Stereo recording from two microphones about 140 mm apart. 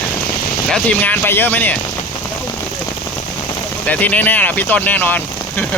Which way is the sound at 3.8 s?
10° left (ahead or behind).